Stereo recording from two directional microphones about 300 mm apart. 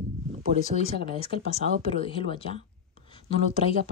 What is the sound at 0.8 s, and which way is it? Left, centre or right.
Speech, left.